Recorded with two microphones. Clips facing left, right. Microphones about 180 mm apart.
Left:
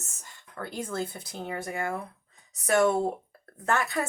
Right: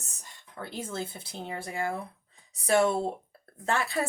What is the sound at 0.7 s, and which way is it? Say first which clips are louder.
Speech: left 3 dB; 25° right (ahead or behind).